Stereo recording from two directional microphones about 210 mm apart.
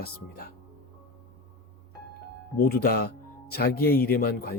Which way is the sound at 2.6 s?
45° left (ahead or behind).